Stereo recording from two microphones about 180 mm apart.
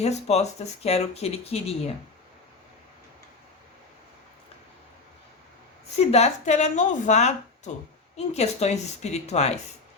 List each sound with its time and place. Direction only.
0.0 s speech: 35° left (ahead or behind)
6.1 s speech: 35° left (ahead or behind)